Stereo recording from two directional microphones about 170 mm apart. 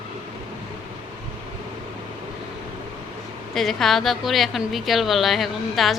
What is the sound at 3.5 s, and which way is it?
A woman's voice, centre (ahead or behind).